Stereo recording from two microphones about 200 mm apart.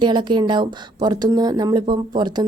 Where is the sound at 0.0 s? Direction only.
20° right (ahead or behind).